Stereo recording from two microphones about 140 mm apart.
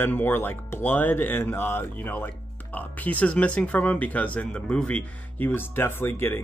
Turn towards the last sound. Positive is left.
turn(degrees=15)  # may be behind; listen again after turning